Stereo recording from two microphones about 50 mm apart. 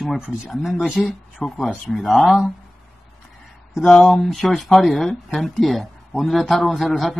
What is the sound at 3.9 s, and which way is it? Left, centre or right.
Speech, centre.